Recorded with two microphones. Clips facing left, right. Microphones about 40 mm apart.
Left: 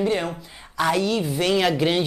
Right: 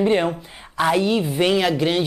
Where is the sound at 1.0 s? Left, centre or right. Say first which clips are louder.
Right 3 dB; right.